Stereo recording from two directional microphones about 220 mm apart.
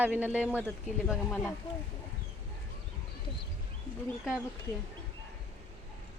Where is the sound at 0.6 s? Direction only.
10° left (ahead or behind).